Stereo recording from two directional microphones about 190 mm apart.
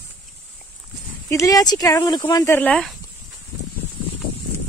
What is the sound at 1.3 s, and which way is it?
Speech, 15° left (ahead or behind).